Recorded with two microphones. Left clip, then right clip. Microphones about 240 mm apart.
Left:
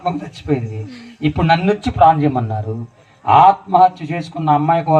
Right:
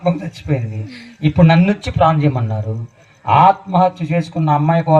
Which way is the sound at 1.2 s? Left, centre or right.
Left.